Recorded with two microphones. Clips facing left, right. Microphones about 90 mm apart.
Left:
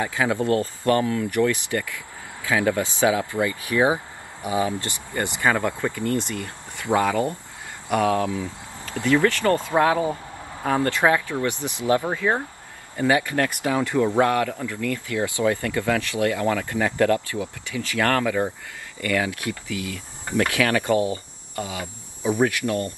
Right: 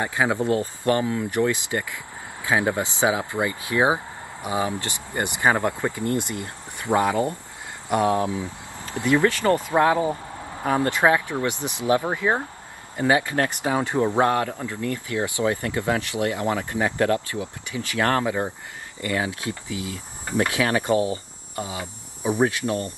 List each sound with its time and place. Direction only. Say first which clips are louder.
0.0 s speech: even; 25° right (ahead or behind)